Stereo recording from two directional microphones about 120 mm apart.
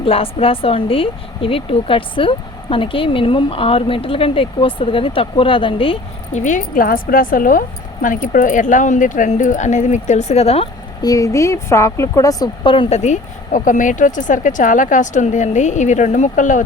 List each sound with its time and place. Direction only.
0.0 s speech: 50° left (ahead or behind)
6.3 s speech: 90° left
8.0 s speech: 90° left; by 10.7 s 55° left (ahead or behind)
11.0 s speech: 30° left (ahead or behind)
12.6 s speech: 45° left (ahead or behind)
12.9 s speech: 75° left (ahead or behind)